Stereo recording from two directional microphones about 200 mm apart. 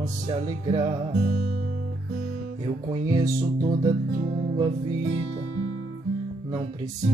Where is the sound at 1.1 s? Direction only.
40° right (ahead or behind).